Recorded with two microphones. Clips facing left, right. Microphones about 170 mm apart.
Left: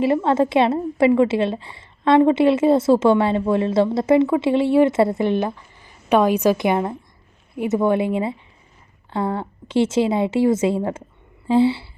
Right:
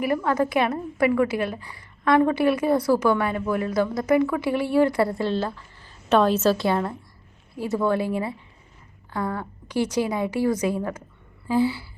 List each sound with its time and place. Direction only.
0.0 s a woman's voice: 25° left (ahead or behind)